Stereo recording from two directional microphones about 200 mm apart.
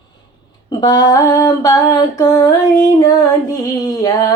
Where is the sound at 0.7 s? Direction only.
20° left (ahead or behind).